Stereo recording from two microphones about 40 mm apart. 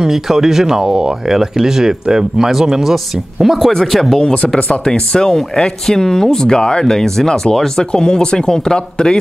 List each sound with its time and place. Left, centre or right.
0.0 s speech: centre
4.2 s speech: left